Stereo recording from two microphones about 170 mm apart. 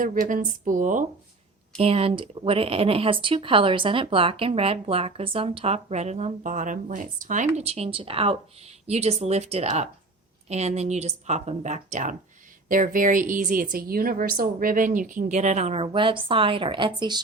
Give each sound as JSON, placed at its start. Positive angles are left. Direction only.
{"t": 0.0, "sound": "a woman's voice", "side_deg": -50}
{"t": 1.8, "sound": "a woman's voice", "side_deg": -35}